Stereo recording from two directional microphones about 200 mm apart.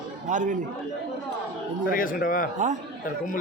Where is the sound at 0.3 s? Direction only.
40° right (ahead or behind).